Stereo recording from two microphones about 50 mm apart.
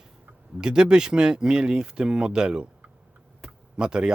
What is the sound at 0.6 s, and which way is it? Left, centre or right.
Speech, centre.